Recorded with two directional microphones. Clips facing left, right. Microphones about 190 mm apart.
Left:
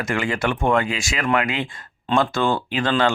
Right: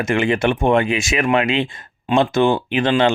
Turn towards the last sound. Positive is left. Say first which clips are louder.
# right 4 dB
turn(degrees=-20)  # may be behind; listen again after turning